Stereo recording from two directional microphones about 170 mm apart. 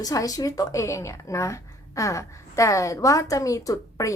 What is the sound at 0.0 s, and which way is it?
A woman's voice, 20° left (ahead or behind).